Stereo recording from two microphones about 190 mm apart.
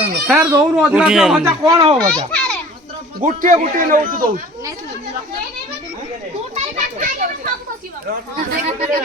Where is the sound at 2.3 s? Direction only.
5° left (ahead or behind).